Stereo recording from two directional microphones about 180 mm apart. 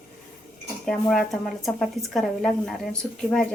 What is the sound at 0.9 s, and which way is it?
A woman's voice, 5° left (ahead or behind).